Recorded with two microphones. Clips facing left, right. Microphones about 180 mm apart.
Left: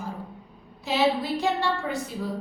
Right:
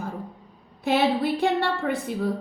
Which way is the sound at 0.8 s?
55° right (ahead or behind).